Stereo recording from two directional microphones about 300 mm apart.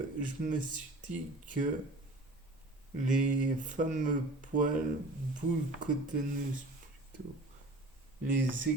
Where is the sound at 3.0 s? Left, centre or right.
Right.